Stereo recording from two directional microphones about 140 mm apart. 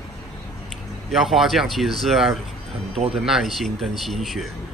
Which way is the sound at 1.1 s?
Centre (ahead or behind).